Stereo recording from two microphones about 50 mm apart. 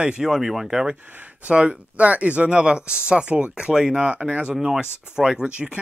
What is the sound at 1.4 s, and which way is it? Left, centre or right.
Speech, right.